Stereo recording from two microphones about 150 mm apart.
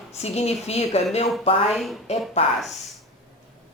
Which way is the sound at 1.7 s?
Centre (ahead or behind).